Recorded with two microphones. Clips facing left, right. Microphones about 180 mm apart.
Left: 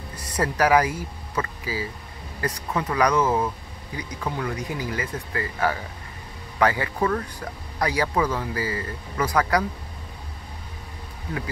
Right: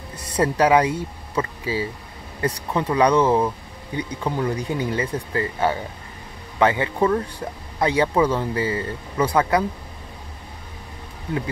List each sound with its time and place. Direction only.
0.1 s speech: 25° right (ahead or behind)